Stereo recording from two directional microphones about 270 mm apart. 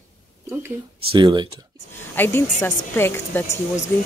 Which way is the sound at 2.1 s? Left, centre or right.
Centre.